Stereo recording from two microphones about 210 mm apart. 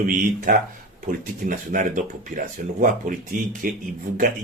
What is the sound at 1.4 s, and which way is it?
Speech, 40° right (ahead or behind).